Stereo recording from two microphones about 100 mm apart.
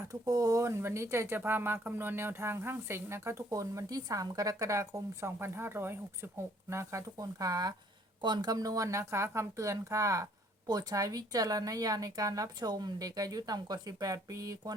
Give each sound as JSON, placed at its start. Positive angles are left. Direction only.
{"t": 0.1, "sound": "speech", "side_deg": -35}